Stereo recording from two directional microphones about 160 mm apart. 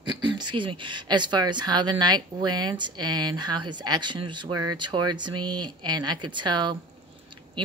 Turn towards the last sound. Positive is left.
turn(degrees=-30)  # may be behind; listen again after turning